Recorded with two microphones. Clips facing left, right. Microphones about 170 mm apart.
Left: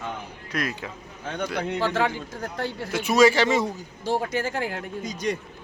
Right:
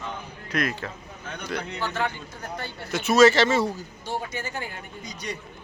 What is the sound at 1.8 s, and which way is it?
A man's voice, 90° left.